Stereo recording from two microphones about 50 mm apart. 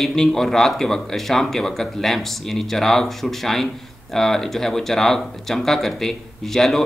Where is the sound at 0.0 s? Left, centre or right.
Centre.